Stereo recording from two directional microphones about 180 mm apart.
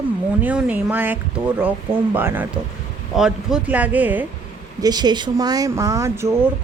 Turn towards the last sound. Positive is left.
turn(degrees=-15)  # may be behind; listen again after turning